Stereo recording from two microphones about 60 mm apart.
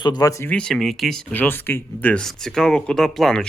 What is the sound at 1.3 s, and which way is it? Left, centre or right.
Speech, left.